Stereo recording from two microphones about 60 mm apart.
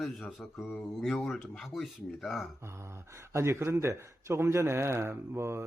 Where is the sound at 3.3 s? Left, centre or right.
Right.